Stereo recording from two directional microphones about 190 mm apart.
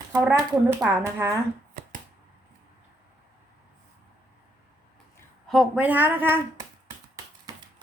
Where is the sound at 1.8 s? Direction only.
50° right (ahead or behind).